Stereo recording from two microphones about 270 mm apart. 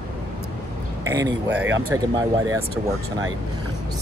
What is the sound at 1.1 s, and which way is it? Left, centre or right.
Speech, centre.